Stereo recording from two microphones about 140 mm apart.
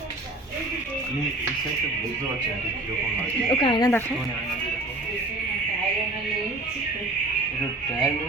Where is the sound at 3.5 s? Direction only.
35° left (ahead or behind).